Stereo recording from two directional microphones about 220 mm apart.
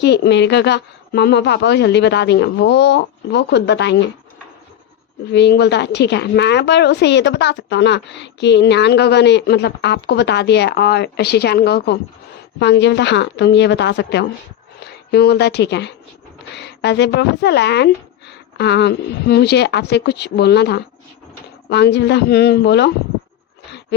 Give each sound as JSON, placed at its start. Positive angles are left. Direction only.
{"t": 0.0, "sound": "a woman's voice", "side_deg": 50}
{"t": 5.3, "sound": "a woman's voice", "side_deg": 50}